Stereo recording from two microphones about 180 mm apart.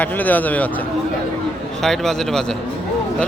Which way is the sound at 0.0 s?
10° left (ahead or behind).